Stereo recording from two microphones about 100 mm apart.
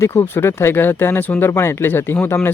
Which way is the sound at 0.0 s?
25° left (ahead or behind).